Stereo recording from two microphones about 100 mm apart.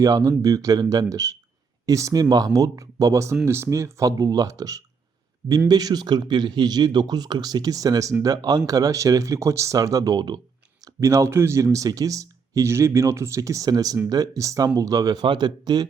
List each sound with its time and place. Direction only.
0.0 s speech: 35° right (ahead or behind)